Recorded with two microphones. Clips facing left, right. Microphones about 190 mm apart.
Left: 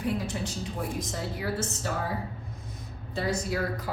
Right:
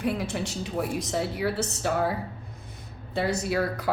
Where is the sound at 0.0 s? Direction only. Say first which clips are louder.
Right 2 dB; 70° right (ahead or behind).